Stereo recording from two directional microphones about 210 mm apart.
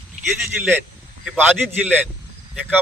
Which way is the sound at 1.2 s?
Centre (ahead or behind).